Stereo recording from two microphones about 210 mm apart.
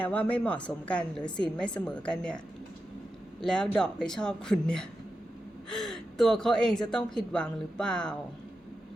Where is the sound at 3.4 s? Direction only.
5° left (ahead or behind).